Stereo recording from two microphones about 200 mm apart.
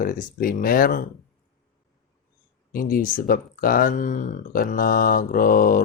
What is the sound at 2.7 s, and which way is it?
Speech, 45° left (ahead or behind).